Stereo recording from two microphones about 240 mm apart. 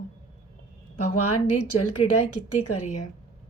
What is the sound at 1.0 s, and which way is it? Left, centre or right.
A woman's voice, left.